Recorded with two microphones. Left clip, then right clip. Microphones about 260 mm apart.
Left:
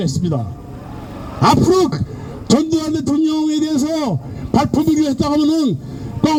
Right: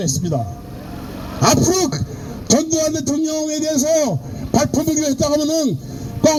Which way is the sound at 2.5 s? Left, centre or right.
Left.